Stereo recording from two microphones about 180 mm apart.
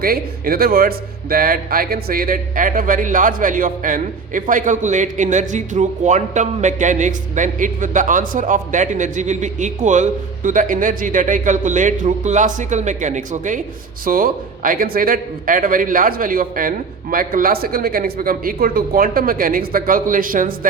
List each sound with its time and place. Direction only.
0.0 s speech: 55° right (ahead or behind)